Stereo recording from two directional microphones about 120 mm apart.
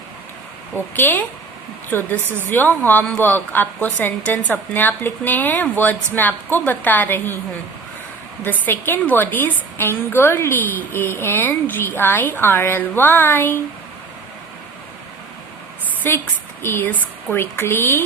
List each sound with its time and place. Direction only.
0.9 s a woman's voice: 15° left (ahead or behind)
8.4 s a woman's voice: 15° left (ahead or behind)
16.0 s speech: 20° left (ahead or behind)